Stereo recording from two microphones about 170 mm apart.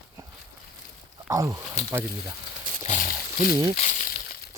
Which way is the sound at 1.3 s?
20° right (ahead or behind).